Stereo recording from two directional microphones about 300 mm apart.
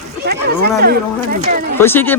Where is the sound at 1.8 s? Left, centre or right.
Centre.